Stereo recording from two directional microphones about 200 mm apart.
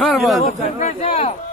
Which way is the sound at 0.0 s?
Centre (ahead or behind).